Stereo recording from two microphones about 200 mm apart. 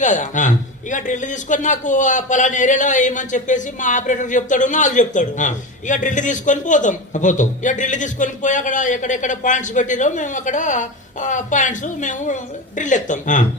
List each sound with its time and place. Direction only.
0.0 s a man's voice: 40° left (ahead or behind)